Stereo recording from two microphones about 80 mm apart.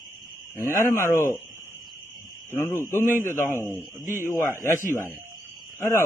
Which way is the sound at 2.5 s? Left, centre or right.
Left.